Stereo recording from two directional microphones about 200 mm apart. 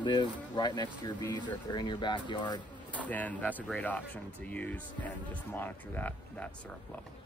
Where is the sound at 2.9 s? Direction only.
5° left (ahead or behind).